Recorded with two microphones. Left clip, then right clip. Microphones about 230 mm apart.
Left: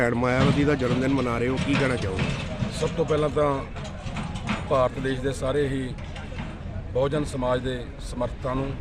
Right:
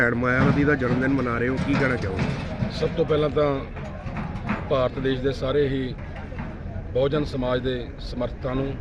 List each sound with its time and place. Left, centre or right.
0.0 s speech: centre
1.5 s speech: left
3.1 s a man's voice: centre
4.1 s train: left
4.7 s a man's voice: centre
6.9 s a man's voice: centre